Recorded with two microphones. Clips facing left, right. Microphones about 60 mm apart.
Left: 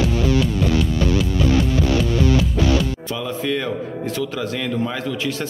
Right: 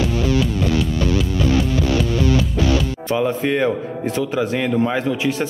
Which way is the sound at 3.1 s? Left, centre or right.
Right.